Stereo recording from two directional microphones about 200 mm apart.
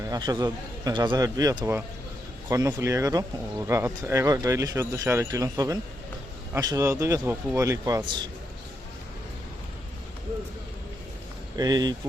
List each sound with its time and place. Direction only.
0.0 s a man's voice: 20° right (ahead or behind)
11.5 s a man's voice: 20° right (ahead or behind)